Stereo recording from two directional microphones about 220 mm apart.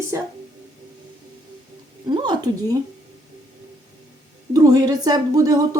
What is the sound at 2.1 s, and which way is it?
Speech, 20° right (ahead or behind).